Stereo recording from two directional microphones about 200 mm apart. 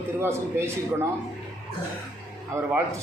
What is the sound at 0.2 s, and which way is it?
Speech, 10° right (ahead or behind).